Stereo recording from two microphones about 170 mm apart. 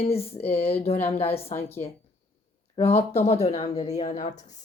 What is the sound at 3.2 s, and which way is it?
Speech, 40° left (ahead or behind).